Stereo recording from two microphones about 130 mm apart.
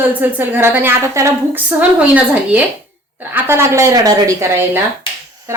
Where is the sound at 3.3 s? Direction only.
20° right (ahead or behind).